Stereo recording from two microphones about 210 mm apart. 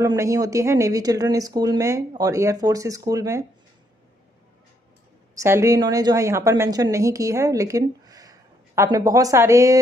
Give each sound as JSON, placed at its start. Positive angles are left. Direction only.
{"t": 0.0, "sound": "a woman's voice", "side_deg": -15}
{"t": 5.3, "sound": "a woman's voice", "side_deg": -15}